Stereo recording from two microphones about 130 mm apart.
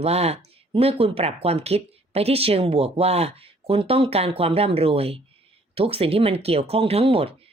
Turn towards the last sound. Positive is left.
turn(degrees=-45)  # may be behind; listen again after turning